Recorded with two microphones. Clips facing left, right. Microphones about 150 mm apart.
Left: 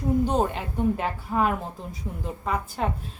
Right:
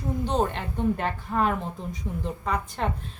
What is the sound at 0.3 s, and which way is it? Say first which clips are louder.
A woman's voice: left 1 dB; 10° left (ahead or behind).